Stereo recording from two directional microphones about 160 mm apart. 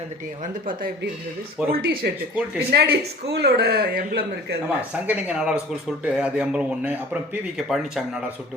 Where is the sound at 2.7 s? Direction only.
90° right.